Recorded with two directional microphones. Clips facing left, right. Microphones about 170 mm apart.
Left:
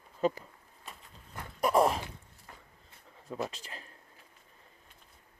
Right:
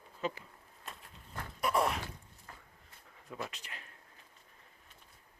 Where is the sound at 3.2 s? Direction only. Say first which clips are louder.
Left 6 dB; 30° left (ahead or behind).